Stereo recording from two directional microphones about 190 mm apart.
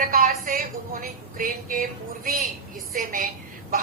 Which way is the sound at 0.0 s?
45° right (ahead or behind).